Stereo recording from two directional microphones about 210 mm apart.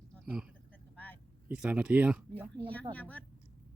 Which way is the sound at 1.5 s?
5° right (ahead or behind).